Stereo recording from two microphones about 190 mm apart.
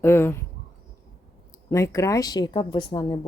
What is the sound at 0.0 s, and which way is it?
Speech, 10° left (ahead or behind).